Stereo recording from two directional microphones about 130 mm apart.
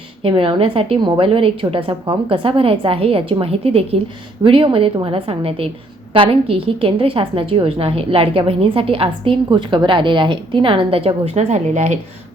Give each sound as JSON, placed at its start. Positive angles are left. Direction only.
{"t": 0.2, "sound": "a woman's voice", "side_deg": -45}